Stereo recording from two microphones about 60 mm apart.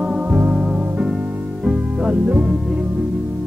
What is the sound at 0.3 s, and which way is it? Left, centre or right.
Music, right.